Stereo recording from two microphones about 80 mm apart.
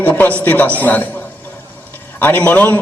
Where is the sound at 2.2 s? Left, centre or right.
Left.